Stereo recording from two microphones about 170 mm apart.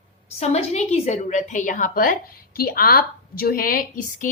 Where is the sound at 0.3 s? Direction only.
40° left (ahead or behind).